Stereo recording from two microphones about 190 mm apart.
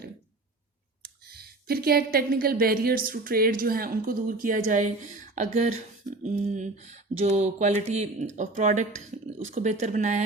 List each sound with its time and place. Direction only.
1.0 s speech: 55° right (ahead or behind)